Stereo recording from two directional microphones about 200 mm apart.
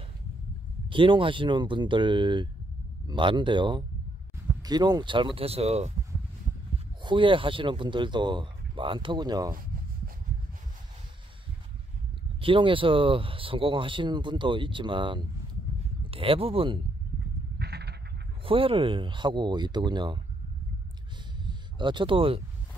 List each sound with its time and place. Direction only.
0.8 s speech: 25° right (ahead or behind)
7.0 s speech: 25° right (ahead or behind)
12.4 s speech: 25° right (ahead or behind)
17.6 s a sound: 55° right (ahead or behind)
18.4 s speech: 25° right (ahead or behind)
21.5 s speech: 25° right (ahead or behind)